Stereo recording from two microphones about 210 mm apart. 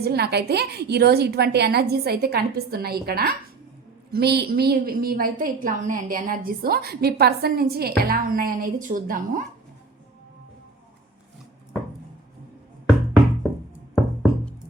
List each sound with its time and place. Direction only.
0.0 s a woman's voice: 50° right (ahead or behind)
13.9 s music: 5° left (ahead or behind)